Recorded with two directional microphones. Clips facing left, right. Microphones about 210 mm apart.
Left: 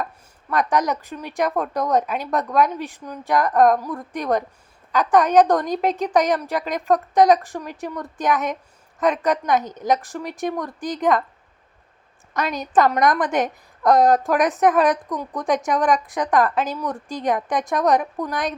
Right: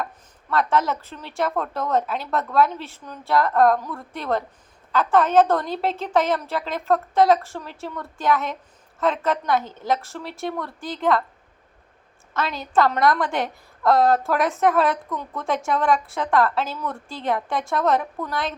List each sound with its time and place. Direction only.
0.5 s a woman's voice: 15° left (ahead or behind)
12.3 s a woman's voice: 15° left (ahead or behind)